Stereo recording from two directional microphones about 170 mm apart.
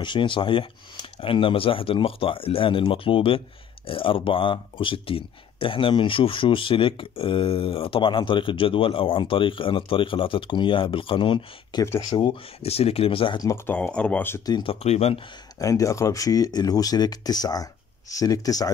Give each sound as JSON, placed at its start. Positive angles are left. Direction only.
{"t": 0.0, "sound": "speech", "side_deg": 30}
{"t": 13.7, "sound": "speech", "side_deg": 5}
{"t": 14.5, "sound": "speech", "side_deg": 30}
{"t": 15.6, "sound": "speech", "side_deg": 20}